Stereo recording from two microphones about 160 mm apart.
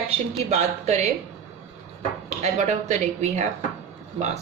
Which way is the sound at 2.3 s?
45° right (ahead or behind).